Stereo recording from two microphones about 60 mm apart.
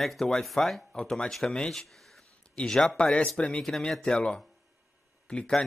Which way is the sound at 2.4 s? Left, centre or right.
Centre.